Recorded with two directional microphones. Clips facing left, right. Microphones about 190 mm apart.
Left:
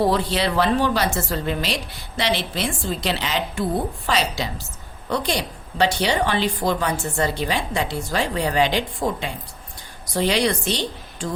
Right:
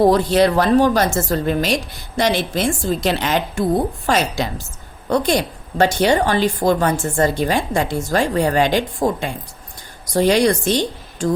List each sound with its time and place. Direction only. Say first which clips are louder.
0.0 s a woman's voice: right 7 dB; 45° right (ahead or behind)